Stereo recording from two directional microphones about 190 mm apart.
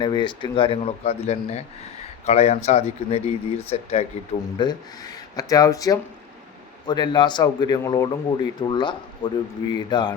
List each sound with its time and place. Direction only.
0.0 s a man's voice: 25° left (ahead or behind)
4.5 s a man's voice: 25° left (ahead or behind)